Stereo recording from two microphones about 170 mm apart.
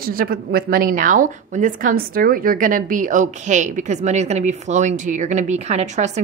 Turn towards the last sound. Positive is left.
turn(degrees=-45)  # may be behind; listen again after turning